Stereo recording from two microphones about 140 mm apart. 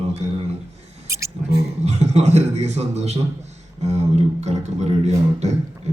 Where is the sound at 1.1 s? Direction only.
20° right (ahead or behind).